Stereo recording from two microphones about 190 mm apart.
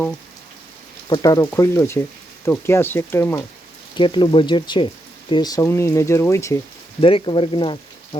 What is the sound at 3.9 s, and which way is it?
Speech, 25° left (ahead or behind).